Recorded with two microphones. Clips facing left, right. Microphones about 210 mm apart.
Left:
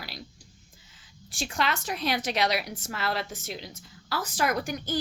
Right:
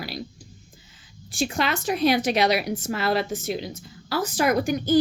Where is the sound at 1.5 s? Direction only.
10° right (ahead or behind).